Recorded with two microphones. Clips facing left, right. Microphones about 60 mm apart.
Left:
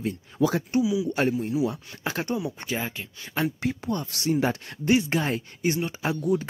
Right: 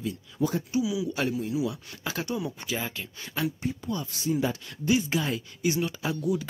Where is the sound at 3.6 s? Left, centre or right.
Left.